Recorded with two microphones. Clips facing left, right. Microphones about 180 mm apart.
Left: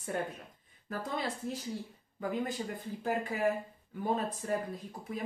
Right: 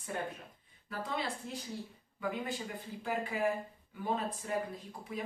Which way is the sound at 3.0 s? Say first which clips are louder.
Left 3 dB; 40° left (ahead or behind).